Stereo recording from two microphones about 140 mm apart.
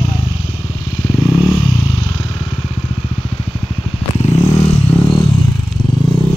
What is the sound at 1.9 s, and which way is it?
Vehicle, 40° left (ahead or behind).